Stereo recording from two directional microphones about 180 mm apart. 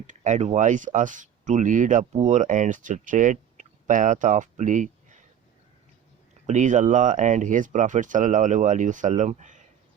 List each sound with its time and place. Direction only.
0.1 s speech: 40° right (ahead or behind)
6.5 s speech: 45° right (ahead or behind)